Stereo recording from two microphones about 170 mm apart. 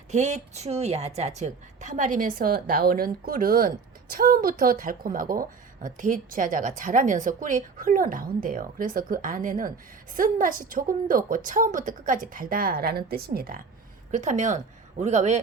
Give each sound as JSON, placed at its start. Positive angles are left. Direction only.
{"t": 0.1, "sound": "a woman's voice", "side_deg": -40}
{"t": 14.1, "sound": "a woman's voice", "side_deg": -45}